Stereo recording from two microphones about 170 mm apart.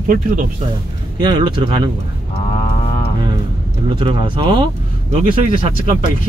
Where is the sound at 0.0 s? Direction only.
55° right (ahead or behind).